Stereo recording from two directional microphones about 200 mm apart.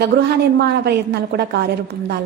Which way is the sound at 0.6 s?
55° right (ahead or behind).